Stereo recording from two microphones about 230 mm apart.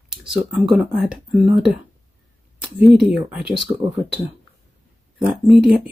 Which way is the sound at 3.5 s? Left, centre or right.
Right.